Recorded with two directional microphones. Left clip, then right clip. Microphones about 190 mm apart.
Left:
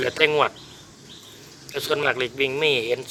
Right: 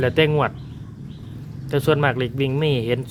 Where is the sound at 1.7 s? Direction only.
5° right (ahead or behind).